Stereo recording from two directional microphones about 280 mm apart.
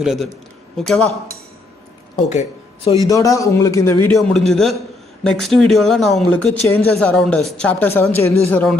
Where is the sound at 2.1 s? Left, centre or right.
Centre.